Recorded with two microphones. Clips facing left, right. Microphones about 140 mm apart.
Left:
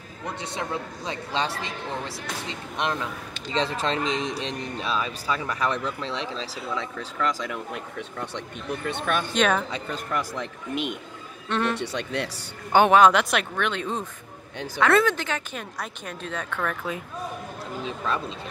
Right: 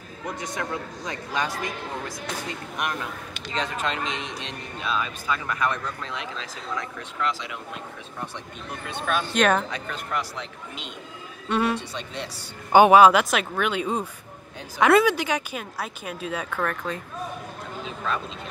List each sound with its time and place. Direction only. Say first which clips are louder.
0.4 s speech: left 1 dB; 25° left (ahead or behind)
7.0 s speech: left 2 dB; 45° left (ahead or behind)
8.8 s speech: even; 55° left (ahead or behind)
9.3 s speech: right 3 dB; centre (ahead or behind)
9.7 s speech: left 1 dB; 30° left (ahead or behind)
10.4 s speech: left 9 dB; 60° left (ahead or behind)
11.4 s a man's voice: right 2 dB; 10° right (ahead or behind)
11.8 s speech: left 5 dB; 65° left (ahead or behind)
12.7 s speech: right 3 dB; 10° right (ahead or behind)